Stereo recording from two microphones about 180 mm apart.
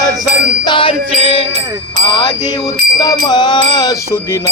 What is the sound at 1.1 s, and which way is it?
Music, 30° left (ahead or behind).